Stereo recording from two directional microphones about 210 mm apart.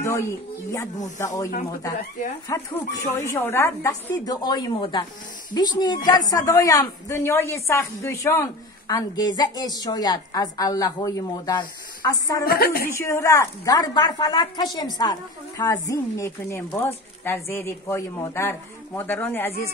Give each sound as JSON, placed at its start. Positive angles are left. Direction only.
{"t": 0.0, "sound": "a woman's voice", "side_deg": 15}
{"t": 12.4, "sound": "a woman's voice", "side_deg": 45}
{"t": 12.9, "sound": "a woman's voice", "side_deg": 15}